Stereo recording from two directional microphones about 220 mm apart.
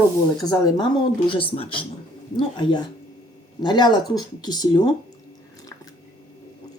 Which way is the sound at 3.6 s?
20° left (ahead or behind).